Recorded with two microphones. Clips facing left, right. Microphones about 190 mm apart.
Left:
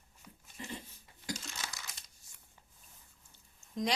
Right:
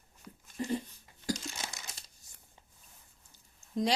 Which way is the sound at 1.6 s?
20° right (ahead or behind).